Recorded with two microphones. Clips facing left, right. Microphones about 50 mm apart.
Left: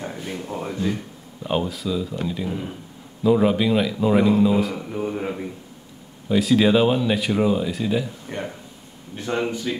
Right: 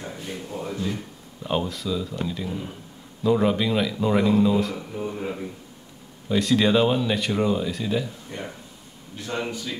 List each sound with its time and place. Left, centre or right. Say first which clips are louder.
0.0 s a sound: left 3 dB; left
1.4 s speech: left 2 dB; centre
4.9 s a man's voice: left 5 dB; left
6.2 s speech: left 3 dB; centre
9.1 s a man's voice: left 5 dB; left